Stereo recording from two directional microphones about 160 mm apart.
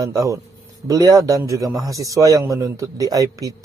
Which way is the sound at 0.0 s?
20° right (ahead or behind).